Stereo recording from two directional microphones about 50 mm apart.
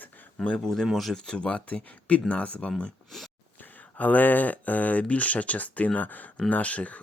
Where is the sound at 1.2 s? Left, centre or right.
Centre.